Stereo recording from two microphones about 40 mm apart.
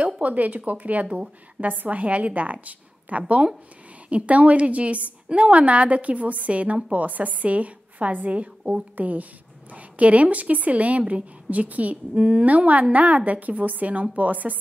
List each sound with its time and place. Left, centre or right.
0.0 s a woman's voice: right